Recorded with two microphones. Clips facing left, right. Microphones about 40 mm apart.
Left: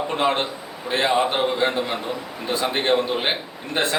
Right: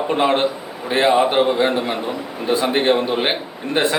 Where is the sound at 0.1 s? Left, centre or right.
Centre.